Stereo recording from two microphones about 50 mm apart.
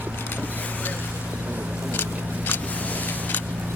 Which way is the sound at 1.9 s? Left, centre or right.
Left.